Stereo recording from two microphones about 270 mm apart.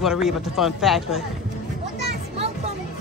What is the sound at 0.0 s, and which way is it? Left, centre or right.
Speech, centre.